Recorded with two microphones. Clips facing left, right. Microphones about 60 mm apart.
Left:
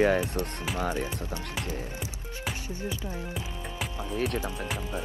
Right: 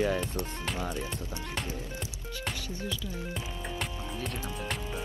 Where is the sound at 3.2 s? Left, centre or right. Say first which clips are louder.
Left 1 dB; centre.